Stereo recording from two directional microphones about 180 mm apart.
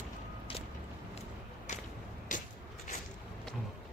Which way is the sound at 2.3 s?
45° left (ahead or behind).